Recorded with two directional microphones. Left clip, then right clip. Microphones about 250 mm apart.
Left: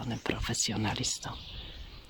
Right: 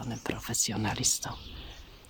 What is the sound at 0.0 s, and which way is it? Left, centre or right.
Speech, centre.